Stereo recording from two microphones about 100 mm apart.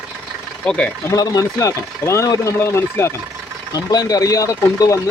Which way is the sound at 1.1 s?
40° left (ahead or behind).